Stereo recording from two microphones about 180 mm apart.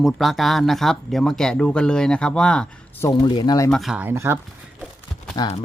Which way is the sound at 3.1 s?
25° left (ahead or behind).